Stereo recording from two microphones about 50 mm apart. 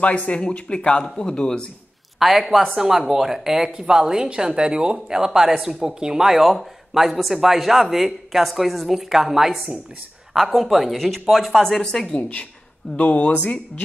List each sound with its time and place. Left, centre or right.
0.0 s speech: left
2.1 s speech: centre
11.8 s speech: centre
12.2 s speech: left